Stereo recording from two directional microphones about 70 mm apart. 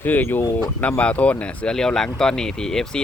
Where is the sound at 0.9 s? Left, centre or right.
Centre.